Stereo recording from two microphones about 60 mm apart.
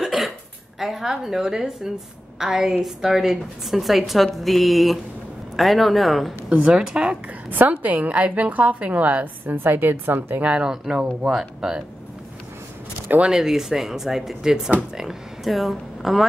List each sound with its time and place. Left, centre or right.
0.0 s hiccup: centre
0.7 s a woman's voice: centre
6.5 s speech: centre
7.7 s a woman's voice: right
10.4 s a woman's voice: right
13.2 s speech: centre